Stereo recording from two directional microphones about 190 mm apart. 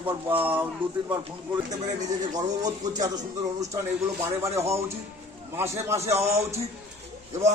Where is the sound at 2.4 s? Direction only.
20° right (ahead or behind).